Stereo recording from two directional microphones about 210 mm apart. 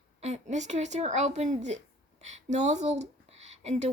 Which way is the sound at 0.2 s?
35° right (ahead or behind).